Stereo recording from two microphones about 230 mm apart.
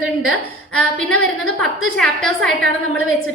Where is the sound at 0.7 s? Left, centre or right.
Centre.